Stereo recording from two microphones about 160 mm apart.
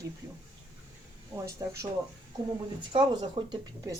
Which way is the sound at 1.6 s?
20° right (ahead or behind).